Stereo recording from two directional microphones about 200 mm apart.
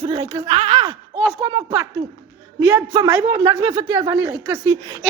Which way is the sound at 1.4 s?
30° right (ahead or behind).